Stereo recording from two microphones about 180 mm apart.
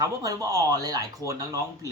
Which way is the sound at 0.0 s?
20° right (ahead or behind).